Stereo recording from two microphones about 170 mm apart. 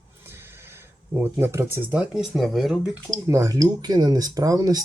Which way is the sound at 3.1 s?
20° right (ahead or behind).